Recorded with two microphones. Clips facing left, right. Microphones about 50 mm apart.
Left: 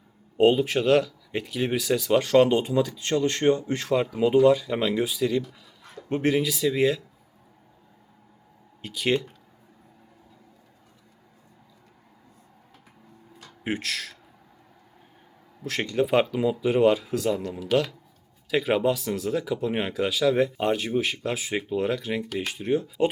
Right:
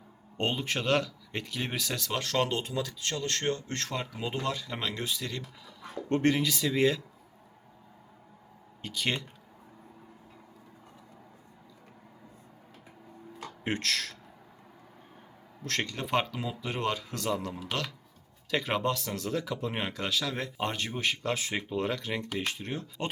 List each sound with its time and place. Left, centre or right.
0.3 s speech: centre
8.8 s speech: centre
13.7 s speech: centre
15.6 s speech: centre